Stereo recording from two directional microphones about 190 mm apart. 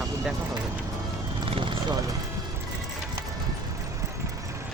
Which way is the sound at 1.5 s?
25° right (ahead or behind).